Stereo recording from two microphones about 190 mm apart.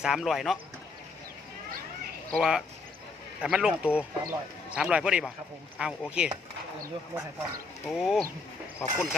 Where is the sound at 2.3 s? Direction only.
5° right (ahead or behind).